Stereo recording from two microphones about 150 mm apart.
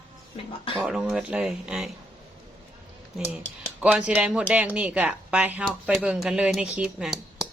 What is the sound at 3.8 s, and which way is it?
A woman's voice, 10° right (ahead or behind).